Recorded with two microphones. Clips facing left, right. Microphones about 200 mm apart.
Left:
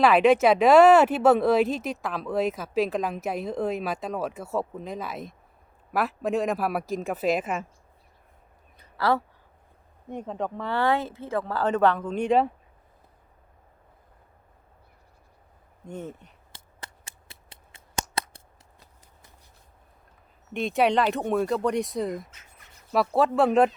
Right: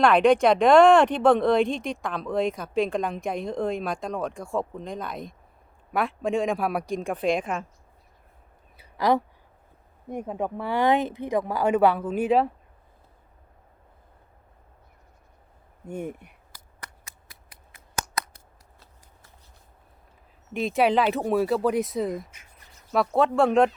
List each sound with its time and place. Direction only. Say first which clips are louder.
0.0 s speech: even; 5° left (ahead or behind)
8.8 s a sound: right 2 dB; 15° right (ahead or behind)
10.1 s speech: right 2 dB; 10° right (ahead or behind)
15.9 s speech: right 4 dB; 10° right (ahead or behind)
16.5 s scissors: left 2 dB; 25° left (ahead or behind)
20.5 s speech: right 1 dB; centre (ahead or behind)